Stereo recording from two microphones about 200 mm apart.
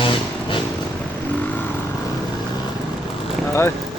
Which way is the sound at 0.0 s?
25° left (ahead or behind).